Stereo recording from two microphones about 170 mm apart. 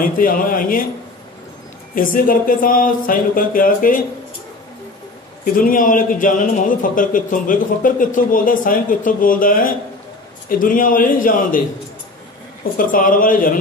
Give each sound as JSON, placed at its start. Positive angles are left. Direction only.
{"t": 0.0, "sound": "speech", "side_deg": 55}
{"t": 2.0, "sound": "speech", "side_deg": 55}
{"t": 5.4, "sound": "a man's voice", "side_deg": 55}
{"t": 12.7, "sound": "a man's voice", "side_deg": 55}